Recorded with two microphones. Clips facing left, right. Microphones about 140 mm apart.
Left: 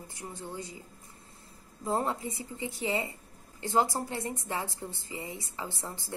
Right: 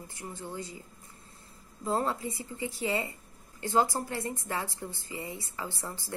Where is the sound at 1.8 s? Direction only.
20° left (ahead or behind).